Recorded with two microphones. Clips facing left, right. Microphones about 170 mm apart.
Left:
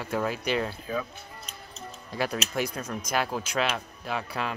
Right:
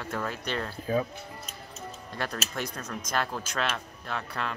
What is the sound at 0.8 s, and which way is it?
Speech, 35° right (ahead or behind).